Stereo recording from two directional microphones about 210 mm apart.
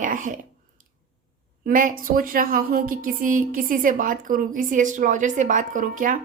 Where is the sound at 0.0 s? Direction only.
40° right (ahead or behind).